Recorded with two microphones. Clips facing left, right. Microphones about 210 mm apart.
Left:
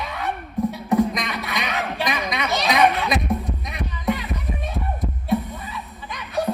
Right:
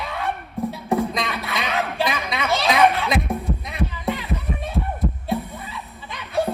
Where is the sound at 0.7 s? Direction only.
25° right (ahead or behind).